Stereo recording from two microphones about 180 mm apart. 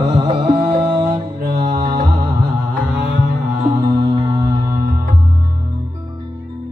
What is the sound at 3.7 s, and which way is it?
Music, 20° right (ahead or behind).